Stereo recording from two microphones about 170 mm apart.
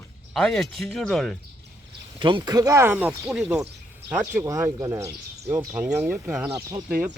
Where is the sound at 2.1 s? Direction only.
25° right (ahead or behind).